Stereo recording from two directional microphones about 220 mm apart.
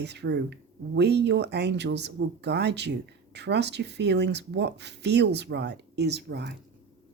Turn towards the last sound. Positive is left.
turn(degrees=-50)  # may be behind; listen again after turning